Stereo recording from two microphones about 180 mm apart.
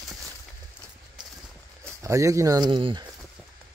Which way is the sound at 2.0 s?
15° right (ahead or behind).